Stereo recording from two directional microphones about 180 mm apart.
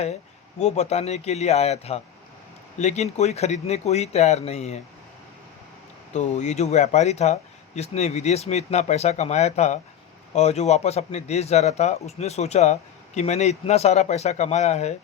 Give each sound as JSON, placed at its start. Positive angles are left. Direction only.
{"t": 0.6, "sound": "speech", "side_deg": 35}
{"t": 6.1, "sound": "speech", "side_deg": 40}